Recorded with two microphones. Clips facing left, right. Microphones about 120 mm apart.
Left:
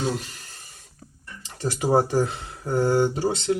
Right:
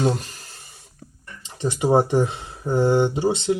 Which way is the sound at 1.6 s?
20° right (ahead or behind).